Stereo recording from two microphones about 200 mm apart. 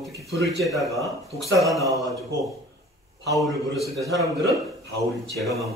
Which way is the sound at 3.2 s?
Centre (ahead or behind).